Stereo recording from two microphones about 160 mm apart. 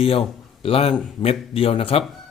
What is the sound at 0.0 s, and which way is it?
A man's voice, 35° left (ahead or behind).